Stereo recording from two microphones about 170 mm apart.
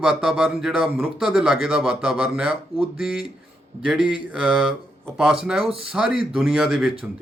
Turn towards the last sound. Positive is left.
turn(degrees=0)  # may be behind; listen again after turning